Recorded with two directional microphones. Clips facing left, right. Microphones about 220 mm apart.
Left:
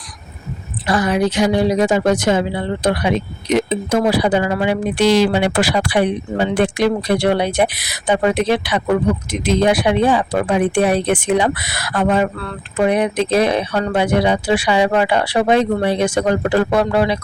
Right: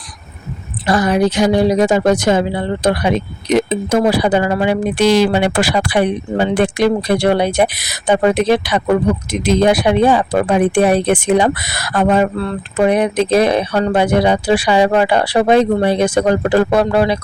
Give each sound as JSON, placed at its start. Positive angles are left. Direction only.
{"t": 0.9, "sound": "speech", "side_deg": -40}
{"t": 12.4, "sound": "speech", "side_deg": -30}
{"t": 12.8, "sound": "speech", "side_deg": -45}